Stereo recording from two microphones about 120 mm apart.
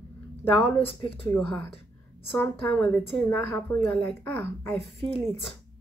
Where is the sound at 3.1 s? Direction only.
10° left (ahead or behind).